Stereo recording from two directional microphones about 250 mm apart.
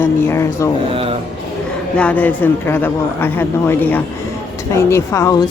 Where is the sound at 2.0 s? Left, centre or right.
Centre.